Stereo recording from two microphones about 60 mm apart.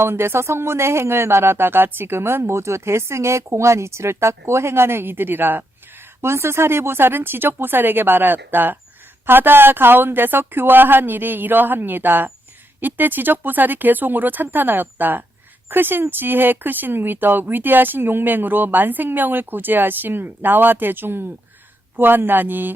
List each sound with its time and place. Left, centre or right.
0.0 s speech: right
6.2 s speech: right